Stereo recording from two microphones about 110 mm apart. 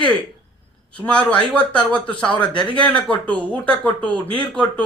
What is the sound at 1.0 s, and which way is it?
A man's voice, 10° left (ahead or behind).